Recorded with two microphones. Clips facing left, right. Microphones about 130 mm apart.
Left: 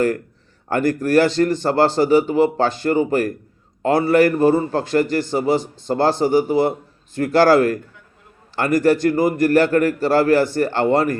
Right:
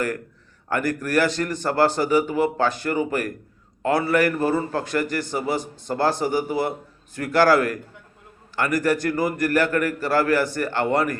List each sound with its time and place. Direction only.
0.7 s a man's voice: 30° left (ahead or behind)